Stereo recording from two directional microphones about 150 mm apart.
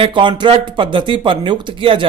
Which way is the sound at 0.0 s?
30° right (ahead or behind).